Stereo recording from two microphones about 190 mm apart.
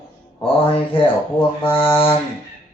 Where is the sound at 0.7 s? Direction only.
25° left (ahead or behind).